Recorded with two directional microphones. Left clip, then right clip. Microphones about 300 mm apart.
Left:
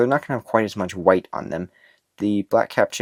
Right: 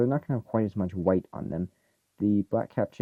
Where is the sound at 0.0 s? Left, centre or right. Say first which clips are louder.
Left 8 dB; centre.